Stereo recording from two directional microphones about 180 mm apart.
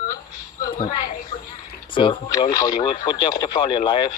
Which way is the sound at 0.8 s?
50° left (ahead or behind).